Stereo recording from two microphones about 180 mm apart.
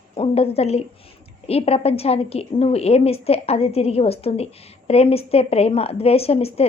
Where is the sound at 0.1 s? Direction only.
30° left (ahead or behind).